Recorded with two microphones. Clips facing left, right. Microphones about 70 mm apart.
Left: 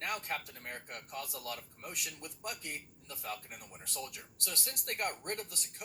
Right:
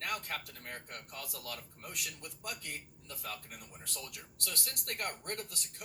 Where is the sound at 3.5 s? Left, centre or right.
Centre.